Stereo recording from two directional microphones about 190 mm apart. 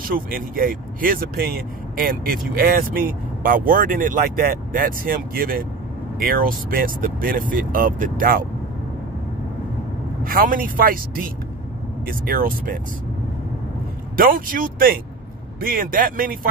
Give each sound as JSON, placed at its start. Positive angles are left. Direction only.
{"t": 0.0, "sound": "speech", "side_deg": -50}
{"t": 10.2, "sound": "speech", "side_deg": -45}
{"t": 14.1, "sound": "speech", "side_deg": -45}